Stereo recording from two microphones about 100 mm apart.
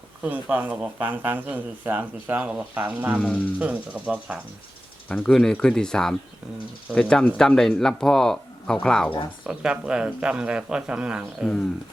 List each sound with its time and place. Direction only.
0.2 s speech: 15° right (ahead or behind)
3.2 s speech: 10° left (ahead or behind)
3.6 s speech: 15° right (ahead or behind)
5.0 s speech: 10° left (ahead or behind)
9.5 s speech: 10° right (ahead or behind)